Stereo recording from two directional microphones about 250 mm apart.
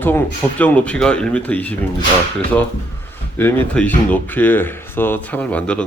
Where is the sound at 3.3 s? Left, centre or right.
Centre.